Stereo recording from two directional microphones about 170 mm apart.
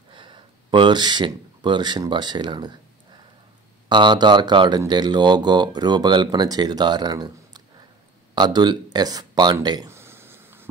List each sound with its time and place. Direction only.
0.1 s speech: 30° right (ahead or behind)
3.9 s speech: 25° right (ahead or behind)
8.9 s a sound: 25° right (ahead or behind)